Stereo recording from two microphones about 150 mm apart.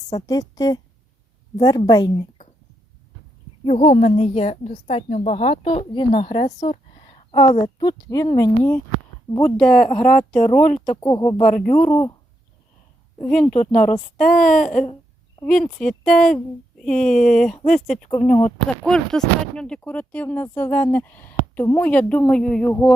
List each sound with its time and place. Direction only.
0.1 s a woman's voice: 25° left (ahead or behind)
3.7 s a woman's voice: 50° left (ahead or behind); by 8.8 s 20° left (ahead or behind)
9.4 s speech: 5° left (ahead or behind)
11.0 s a woman's voice: 25° left (ahead or behind)
13.3 s speech: 5° left (ahead or behind)
14.6 s a sound: 60° left (ahead or behind)
15.4 s speech: 5° left (ahead or behind)
18.1 s speech: 40° left (ahead or behind)
18.9 s speech: 5° left (ahead or behind)